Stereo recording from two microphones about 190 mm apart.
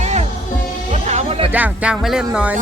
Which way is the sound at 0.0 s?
35° right (ahead or behind).